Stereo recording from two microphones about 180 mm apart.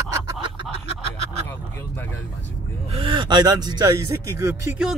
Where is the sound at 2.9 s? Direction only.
30° right (ahead or behind).